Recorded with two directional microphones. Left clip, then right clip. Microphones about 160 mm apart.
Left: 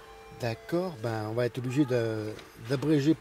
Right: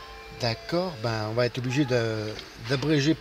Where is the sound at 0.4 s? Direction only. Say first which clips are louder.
Right 4 dB; 35° left (ahead or behind).